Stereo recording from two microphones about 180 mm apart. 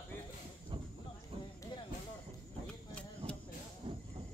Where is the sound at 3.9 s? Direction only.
30° right (ahead or behind).